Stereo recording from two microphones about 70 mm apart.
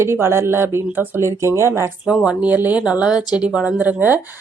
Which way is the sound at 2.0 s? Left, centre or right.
Centre.